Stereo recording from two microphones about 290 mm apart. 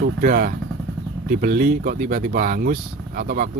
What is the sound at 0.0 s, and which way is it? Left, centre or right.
Speech, right.